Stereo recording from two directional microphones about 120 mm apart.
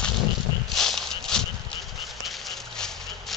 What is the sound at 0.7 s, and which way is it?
Horse, 5° left (ahead or behind).